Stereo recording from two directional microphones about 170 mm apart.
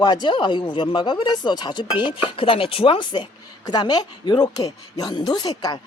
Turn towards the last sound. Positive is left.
turn(degrees=25)  # may be behind; listen again after turning